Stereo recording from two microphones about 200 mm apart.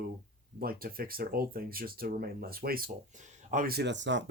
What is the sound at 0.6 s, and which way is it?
Speech, 50° right (ahead or behind).